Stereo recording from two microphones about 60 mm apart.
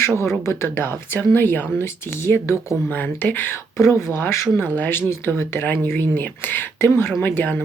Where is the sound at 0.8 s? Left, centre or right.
Left.